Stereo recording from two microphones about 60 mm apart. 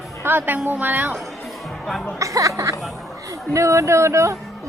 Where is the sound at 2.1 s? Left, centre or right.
Right.